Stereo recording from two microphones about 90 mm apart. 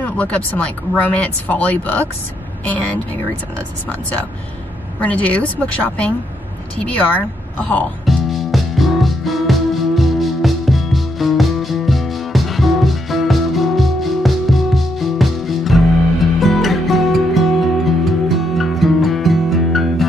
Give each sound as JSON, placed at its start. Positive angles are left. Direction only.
{"t": 0.0, "sound": "speech", "side_deg": 15}
{"t": 5.0, "sound": "a woman's voice", "side_deg": 15}
{"t": 8.0, "sound": "music", "side_deg": 0}